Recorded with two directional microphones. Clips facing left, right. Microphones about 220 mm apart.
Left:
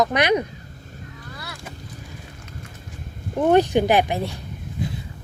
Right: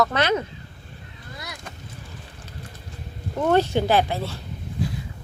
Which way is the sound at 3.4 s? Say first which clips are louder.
Left 3 dB; 15° left (ahead or behind).